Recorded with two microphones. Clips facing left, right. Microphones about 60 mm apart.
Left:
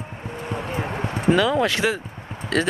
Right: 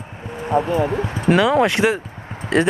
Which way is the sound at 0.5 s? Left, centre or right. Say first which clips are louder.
Right 10 dB; right.